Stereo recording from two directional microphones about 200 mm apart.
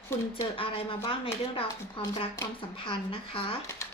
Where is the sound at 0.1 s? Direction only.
10° left (ahead or behind).